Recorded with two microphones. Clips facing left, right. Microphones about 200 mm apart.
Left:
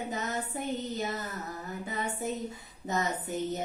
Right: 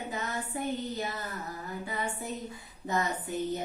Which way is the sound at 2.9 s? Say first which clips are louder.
Even; 20° left (ahead or behind).